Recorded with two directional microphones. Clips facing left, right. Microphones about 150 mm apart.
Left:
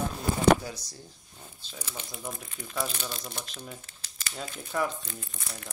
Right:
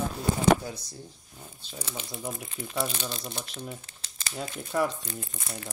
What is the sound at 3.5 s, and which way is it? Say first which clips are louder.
Speech: right 4 dB; 5° right (ahead or behind).